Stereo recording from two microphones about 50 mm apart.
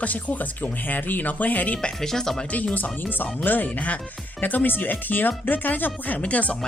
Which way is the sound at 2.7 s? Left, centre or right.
Left.